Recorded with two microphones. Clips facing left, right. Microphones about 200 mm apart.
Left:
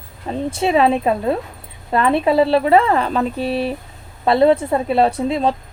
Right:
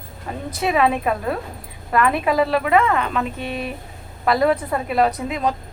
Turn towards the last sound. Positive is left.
turn(degrees=30)  # may be behind; listen again after turning